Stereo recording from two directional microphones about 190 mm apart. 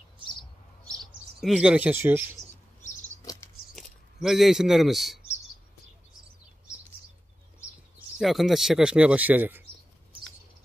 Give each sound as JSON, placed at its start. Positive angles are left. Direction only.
{"t": 0.2, "sound": "bird", "side_deg": 25}
{"t": 0.9, "sound": "speech", "side_deg": -5}
{"t": 2.8, "sound": "a sound", "side_deg": 40}
{"t": 3.7, "sound": "speech", "side_deg": 0}
{"t": 8.2, "sound": "speech", "side_deg": 0}